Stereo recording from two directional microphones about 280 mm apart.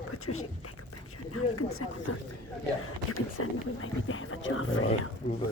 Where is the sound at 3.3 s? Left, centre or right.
Left.